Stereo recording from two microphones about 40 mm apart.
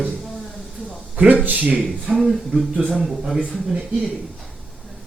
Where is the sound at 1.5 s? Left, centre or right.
Right.